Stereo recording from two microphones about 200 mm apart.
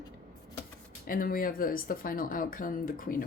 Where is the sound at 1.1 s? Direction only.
45° left (ahead or behind).